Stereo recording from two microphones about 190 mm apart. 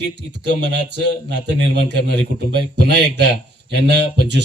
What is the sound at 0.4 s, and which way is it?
Speech, 65° right (ahead or behind).